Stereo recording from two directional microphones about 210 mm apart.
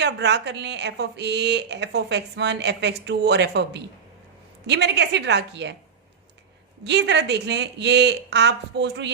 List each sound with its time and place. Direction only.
0.0 s a woman's voice: 55° right (ahead or behind)
6.8 s a woman's voice: 55° right (ahead or behind)